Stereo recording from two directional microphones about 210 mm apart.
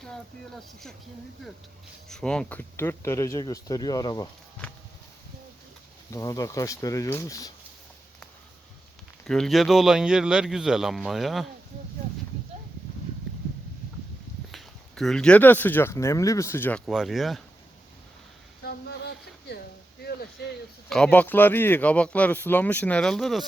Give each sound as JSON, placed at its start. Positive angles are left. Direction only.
{"t": 0.0, "sound": "speech", "side_deg": 0}
{"t": 2.0, "sound": "speech", "side_deg": 5}
{"t": 6.1, "sound": "speech", "side_deg": 15}
{"t": 9.2, "sound": "speech", "side_deg": 0}
{"t": 14.5, "sound": "speech", "side_deg": 0}
{"t": 18.6, "sound": "a sound", "side_deg": 50}
{"t": 20.9, "sound": "speech", "side_deg": 5}